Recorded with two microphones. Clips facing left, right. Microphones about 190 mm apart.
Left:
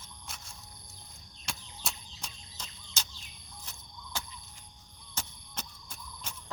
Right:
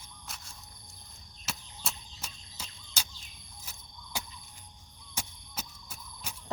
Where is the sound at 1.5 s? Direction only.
Centre (ahead or behind).